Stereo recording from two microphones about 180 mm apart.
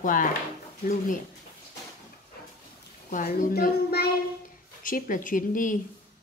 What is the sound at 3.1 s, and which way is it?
A woman's voice, 50° left (ahead or behind).